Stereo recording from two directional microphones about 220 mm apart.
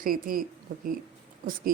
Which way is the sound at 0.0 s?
40° right (ahead or behind).